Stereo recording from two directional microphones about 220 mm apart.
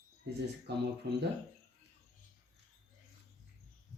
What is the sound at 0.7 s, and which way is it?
Speech, 50° right (ahead or behind).